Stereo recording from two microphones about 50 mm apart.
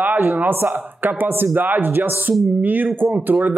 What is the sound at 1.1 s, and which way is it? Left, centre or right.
Speech, right.